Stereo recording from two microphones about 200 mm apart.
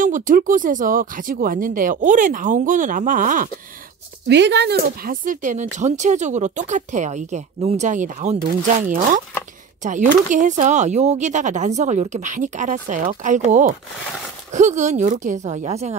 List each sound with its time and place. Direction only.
0.0 s speech: 40° right (ahead or behind)
4.3 s speech: 60° right (ahead or behind); by 16.0 s 30° right (ahead or behind)